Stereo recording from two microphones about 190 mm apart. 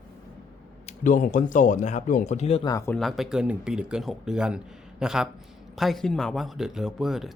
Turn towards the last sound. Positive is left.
turn(degrees=0)  # may be behind; listen again after turning